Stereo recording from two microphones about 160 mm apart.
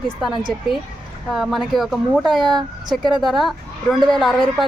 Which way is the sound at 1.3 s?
Centre (ahead or behind).